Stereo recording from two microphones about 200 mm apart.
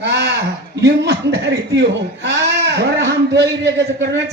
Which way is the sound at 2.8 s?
60° right (ahead or behind).